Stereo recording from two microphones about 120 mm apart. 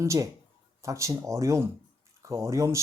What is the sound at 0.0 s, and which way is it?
Speech, 25° right (ahead or behind).